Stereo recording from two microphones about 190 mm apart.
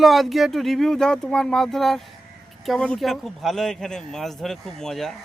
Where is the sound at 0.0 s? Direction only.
Centre (ahead or behind).